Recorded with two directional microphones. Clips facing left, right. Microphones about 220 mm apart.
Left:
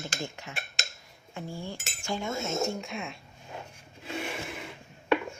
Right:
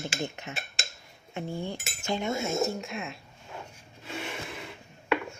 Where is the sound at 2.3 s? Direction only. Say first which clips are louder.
Right 1 dB; 10° right (ahead or behind).